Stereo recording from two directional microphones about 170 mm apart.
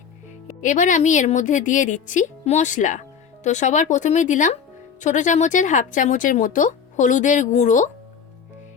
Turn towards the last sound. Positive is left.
turn(degrees=45)  # may be behind; listen again after turning